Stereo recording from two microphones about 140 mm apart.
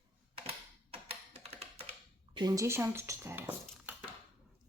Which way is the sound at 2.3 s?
30° right (ahead or behind).